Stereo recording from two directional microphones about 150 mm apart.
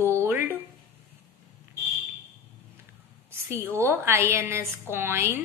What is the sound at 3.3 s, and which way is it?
A woman's voice, 15° right (ahead or behind).